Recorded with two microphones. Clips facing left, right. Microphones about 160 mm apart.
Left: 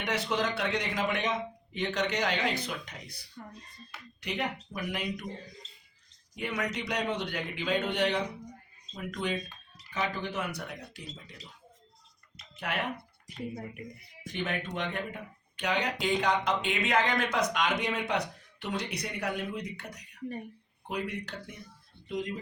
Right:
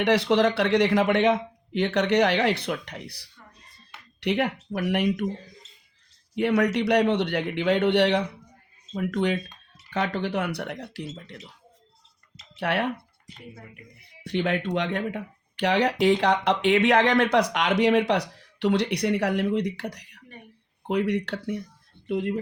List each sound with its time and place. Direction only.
0.0 s speech: 70° right (ahead or behind)
6.3 s speech: 65° right (ahead or behind)
12.5 s speech: 65° right (ahead or behind)
14.3 s speech: 70° right (ahead or behind)
22.0 s speech: 65° right (ahead or behind)